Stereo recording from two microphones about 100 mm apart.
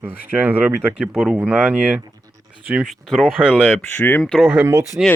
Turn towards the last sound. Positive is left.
turn(degrees=-10)  # may be behind; listen again after turning